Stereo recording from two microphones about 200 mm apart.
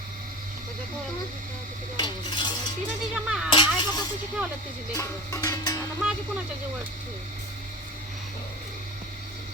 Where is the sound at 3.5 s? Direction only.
25° left (ahead or behind).